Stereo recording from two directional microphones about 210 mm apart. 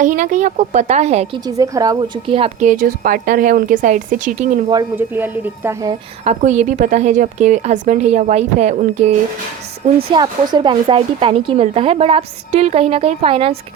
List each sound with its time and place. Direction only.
0.0 s a woman's voice: 40° right (ahead or behind)
1.5 s a woman's voice: 15° right (ahead or behind); by 4.6 s 35° right (ahead or behind)
4.7 s speech: 15° right (ahead or behind)
6.2 s a woman's voice: 35° right (ahead or behind)
10.1 s a woman's voice: 20° right (ahead or behind)